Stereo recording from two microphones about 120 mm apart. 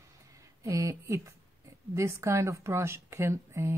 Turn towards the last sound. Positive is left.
turn(degrees=-20)  # may be behind; listen again after turning